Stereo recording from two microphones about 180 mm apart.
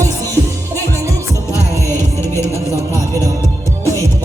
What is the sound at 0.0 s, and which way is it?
Music, 15° right (ahead or behind).